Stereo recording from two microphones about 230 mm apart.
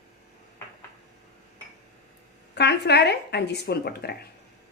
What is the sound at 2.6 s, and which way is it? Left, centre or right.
A woman's voice, left.